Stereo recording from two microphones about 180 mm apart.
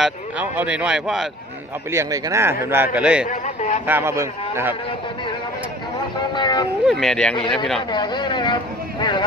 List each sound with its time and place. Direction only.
0.0 s speech: 5° right (ahead or behind)
1.9 s a man's voice: 15° right (ahead or behind)
3.3 s a man's voice: 40° left (ahead or behind)
3.8 s a man's voice: 10° right (ahead or behind)
6.3 s speech: 25° left (ahead or behind)
6.9 s speech: centre (ahead or behind)
7.9 s speech: 25° left (ahead or behind)